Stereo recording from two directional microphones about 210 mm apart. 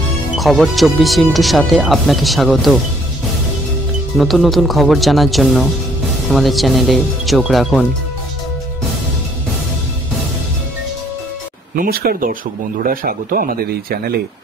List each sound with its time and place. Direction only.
0.4 s speech: centre (ahead or behind)
4.2 s speech: centre (ahead or behind)
11.7 s speech: 45° right (ahead or behind)